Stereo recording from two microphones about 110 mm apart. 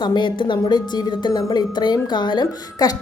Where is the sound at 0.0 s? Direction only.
45° left (ahead or behind).